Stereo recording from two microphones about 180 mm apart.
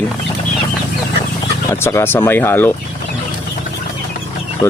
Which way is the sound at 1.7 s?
15° left (ahead or behind).